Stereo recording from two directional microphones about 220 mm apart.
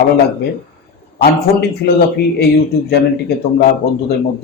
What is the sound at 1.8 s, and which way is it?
Speech, 50° left (ahead or behind).